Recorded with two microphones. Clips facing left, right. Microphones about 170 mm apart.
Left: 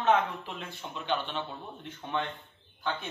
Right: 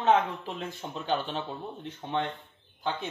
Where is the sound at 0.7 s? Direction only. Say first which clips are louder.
Right 2 dB; 40° right (ahead or behind).